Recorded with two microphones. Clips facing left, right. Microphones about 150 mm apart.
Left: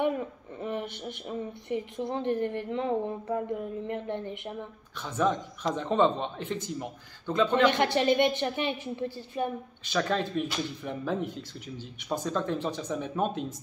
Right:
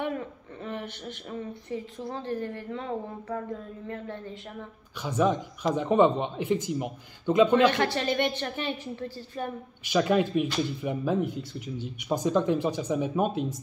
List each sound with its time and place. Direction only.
0.0 s a woman's voice: 15° left (ahead or behind)
5.0 s speech: 10° right (ahead or behind)
7.7 s a woman's voice: 20° left (ahead or behind)
9.8 s speech: 10° right (ahead or behind)